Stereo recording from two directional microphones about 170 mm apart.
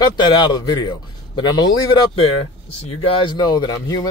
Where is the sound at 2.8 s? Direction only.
25° left (ahead or behind).